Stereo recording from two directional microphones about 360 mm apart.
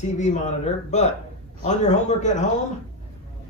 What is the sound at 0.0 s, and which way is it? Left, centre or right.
A man's voice, centre.